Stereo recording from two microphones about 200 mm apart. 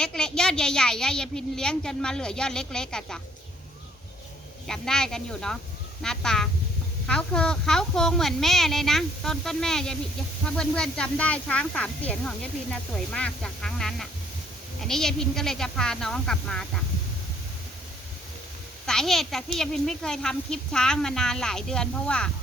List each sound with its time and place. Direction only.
0.0 s speech: 5° left (ahead or behind)
4.6 s speech: 5° left (ahead or behind)
18.9 s speech: centre (ahead or behind)